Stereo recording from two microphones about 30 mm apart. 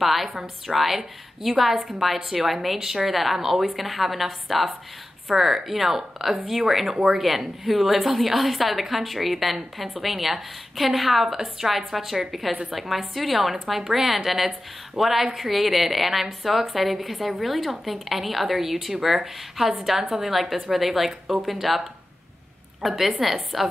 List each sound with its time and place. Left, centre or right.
0.0 s a woman's voice: centre